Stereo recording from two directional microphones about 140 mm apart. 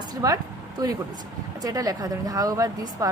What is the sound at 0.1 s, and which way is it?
Speech, 25° right (ahead or behind).